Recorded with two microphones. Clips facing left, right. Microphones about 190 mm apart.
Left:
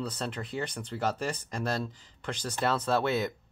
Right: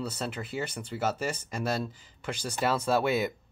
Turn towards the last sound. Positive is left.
turn(degrees=-10)  # may be behind; listen again after turning